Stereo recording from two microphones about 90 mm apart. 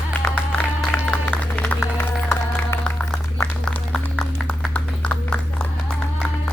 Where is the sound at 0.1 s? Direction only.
15° left (ahead or behind).